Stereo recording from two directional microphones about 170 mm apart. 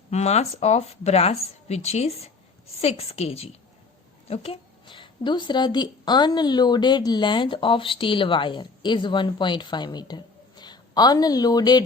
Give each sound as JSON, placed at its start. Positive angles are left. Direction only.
{"t": 0.1, "sound": "speech", "side_deg": 40}